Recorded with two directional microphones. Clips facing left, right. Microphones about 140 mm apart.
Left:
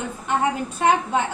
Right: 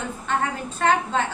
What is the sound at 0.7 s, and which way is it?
Speech, 15° left (ahead or behind).